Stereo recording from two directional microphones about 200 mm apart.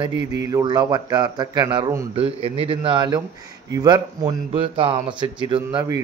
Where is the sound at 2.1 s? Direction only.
30° right (ahead or behind).